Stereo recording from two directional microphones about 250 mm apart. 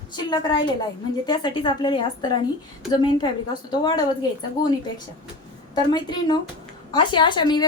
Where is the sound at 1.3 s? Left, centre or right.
Centre.